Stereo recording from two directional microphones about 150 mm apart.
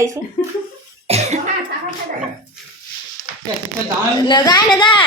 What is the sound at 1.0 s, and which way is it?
Cough, 45° right (ahead or behind).